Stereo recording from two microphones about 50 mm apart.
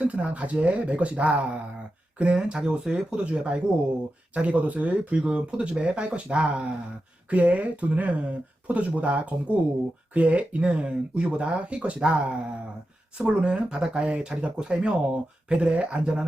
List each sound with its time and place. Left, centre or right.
0.0 s speech: right